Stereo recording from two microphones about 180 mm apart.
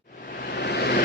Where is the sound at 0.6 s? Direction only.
65° left (ahead or behind).